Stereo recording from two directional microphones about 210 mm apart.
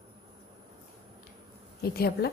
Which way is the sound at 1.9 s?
50° left (ahead or behind).